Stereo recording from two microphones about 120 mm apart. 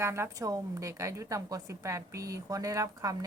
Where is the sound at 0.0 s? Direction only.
20° right (ahead or behind).